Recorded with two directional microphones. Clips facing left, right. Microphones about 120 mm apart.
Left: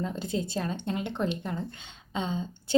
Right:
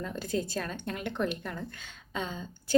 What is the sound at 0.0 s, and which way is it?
Speech, 20° left (ahead or behind).